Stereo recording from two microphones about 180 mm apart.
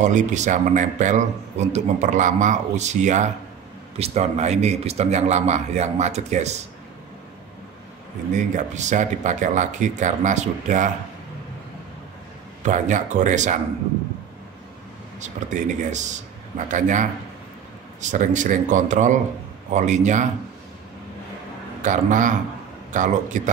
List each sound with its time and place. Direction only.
0.0 s a man's voice: 45° right (ahead or behind)
8.4 s speech: 40° right (ahead or behind)
12.6 s speech: 45° right (ahead or behind)
15.1 s a man's voice: 40° right (ahead or behind)
21.8 s speech: 45° right (ahead or behind)